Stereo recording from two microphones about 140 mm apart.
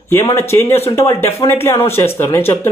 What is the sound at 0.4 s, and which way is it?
Speech, 20° left (ahead or behind).